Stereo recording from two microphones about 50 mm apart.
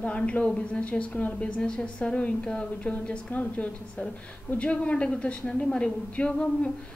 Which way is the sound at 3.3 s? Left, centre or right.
Left.